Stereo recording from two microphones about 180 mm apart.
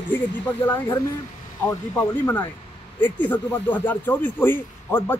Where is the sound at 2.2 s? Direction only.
15° left (ahead or behind).